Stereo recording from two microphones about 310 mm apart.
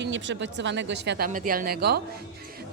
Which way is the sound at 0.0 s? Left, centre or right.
Right.